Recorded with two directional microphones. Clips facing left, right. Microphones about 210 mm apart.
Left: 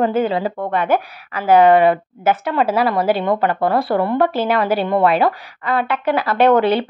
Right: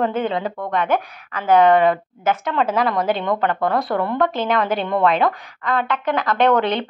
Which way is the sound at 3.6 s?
30° left (ahead or behind).